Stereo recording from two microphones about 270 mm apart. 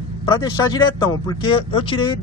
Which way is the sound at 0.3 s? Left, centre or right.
Centre.